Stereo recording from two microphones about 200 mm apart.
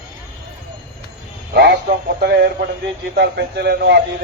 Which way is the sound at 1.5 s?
55° right (ahead or behind).